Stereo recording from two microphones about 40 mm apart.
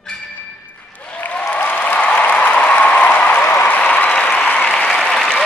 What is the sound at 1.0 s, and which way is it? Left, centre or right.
Applause, left.